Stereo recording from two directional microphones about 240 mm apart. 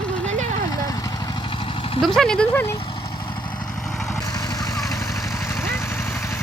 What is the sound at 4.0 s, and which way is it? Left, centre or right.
Vehicle, centre.